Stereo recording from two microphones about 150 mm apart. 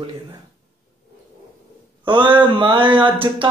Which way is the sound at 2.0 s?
35° right (ahead or behind).